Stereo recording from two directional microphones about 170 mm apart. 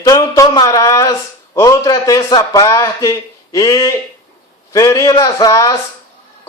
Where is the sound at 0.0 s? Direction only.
20° left (ahead or behind).